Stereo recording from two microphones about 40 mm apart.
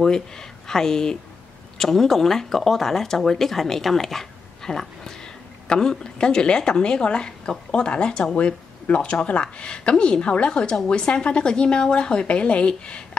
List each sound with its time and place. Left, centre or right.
0.0 s speech: centre